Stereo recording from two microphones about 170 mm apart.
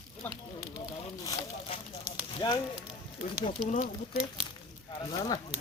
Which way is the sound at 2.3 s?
25° left (ahead or behind).